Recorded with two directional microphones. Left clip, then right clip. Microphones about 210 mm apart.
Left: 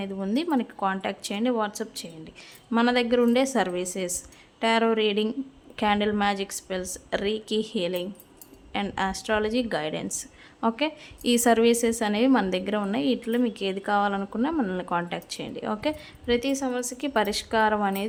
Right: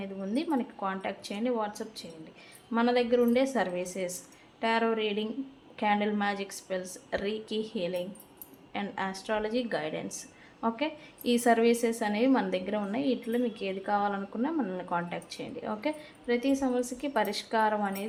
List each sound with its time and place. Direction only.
0.0 s a woman's voice: 35° left (ahead or behind)